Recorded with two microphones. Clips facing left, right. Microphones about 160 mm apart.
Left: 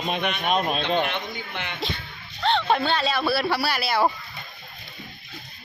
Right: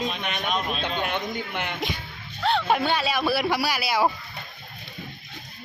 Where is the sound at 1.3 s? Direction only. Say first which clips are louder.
Right 3 dB; 50° right (ahead or behind).